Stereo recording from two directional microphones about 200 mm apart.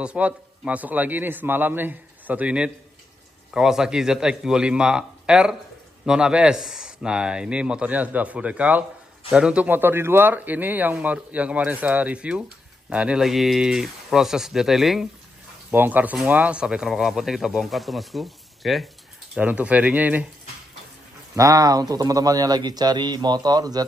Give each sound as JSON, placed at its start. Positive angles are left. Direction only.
{"t": 0.0, "sound": "a man's voice", "side_deg": -5}
{"t": 21.4, "sound": "speech", "side_deg": -20}